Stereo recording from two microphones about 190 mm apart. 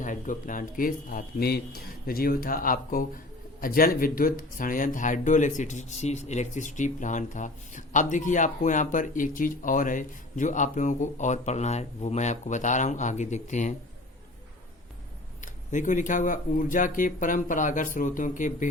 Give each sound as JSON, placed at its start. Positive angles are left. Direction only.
{"t": 0.0, "sound": "speech", "side_deg": 45}
{"t": 15.4, "sound": "speech", "side_deg": 40}